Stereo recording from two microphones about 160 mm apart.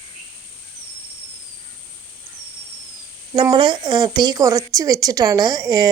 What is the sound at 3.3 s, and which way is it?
Speech, 30° right (ahead or behind).